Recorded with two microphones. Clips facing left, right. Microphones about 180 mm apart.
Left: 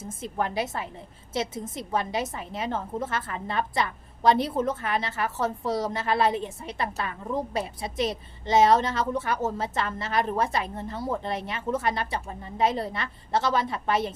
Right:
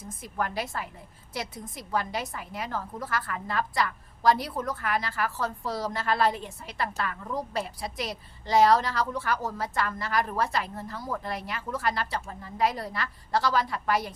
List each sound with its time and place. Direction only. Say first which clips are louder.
0.0 s a woman's voice: left 3 dB; 25° left (ahead or behind)